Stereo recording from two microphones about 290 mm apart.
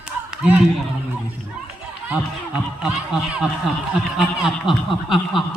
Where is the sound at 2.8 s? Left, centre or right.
Centre.